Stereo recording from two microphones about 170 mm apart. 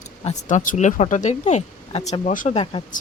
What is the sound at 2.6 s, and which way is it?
Speech, 30° left (ahead or behind).